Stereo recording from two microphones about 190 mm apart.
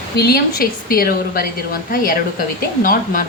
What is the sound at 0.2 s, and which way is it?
Speech, 55° left (ahead or behind).